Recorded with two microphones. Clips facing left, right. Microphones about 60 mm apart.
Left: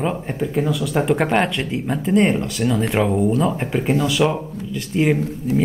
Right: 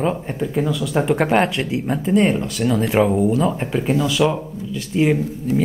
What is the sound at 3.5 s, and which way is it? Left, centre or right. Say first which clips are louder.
Speech: even; centre.